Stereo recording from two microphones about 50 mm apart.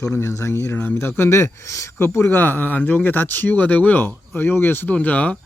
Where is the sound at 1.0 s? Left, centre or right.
Left.